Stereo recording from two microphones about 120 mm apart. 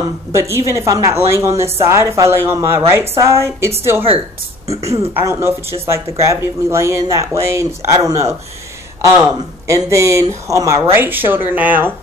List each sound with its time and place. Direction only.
0.3 s speech: 25° right (ahead or behind)
4.6 s speech: 60° right (ahead or behind)
5.2 s speech: 20° right (ahead or behind)